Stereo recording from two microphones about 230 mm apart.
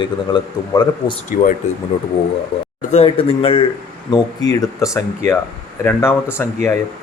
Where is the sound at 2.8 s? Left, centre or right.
Left; by 6.5 s centre.